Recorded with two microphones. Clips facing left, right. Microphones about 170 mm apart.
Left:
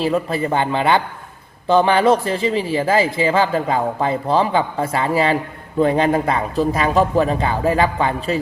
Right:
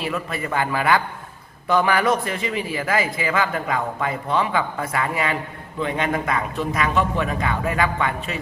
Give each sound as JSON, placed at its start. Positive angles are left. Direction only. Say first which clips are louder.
{"t": 0.0, "sound": "a man's voice", "louder": "left 8 dB", "side_deg": 30}